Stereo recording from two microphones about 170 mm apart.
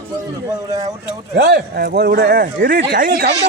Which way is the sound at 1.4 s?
70° right (ahead or behind).